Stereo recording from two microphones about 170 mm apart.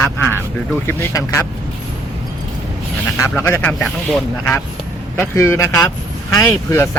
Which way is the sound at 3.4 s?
10° left (ahead or behind).